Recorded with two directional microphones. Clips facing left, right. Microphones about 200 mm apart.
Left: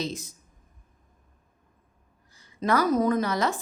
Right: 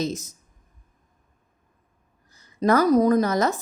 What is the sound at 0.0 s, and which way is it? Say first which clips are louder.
Speech: right 5 dB; 45° right (ahead or behind).